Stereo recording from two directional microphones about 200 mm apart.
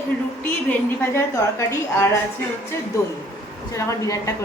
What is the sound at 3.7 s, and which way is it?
Speech, 15° left (ahead or behind).